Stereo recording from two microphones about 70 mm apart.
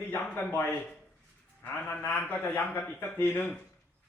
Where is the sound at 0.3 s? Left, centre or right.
Left.